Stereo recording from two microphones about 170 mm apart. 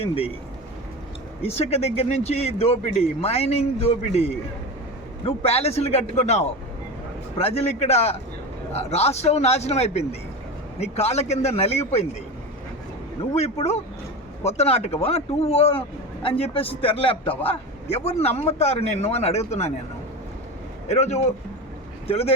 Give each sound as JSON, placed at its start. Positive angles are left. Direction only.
{"t": 0.0, "sound": "a man's voice", "side_deg": 35}
{"t": 1.4, "sound": "a man's voice", "side_deg": 40}
{"t": 13.3, "sound": "a man's voice", "side_deg": 40}
{"t": 20.8, "sound": "speech", "side_deg": 40}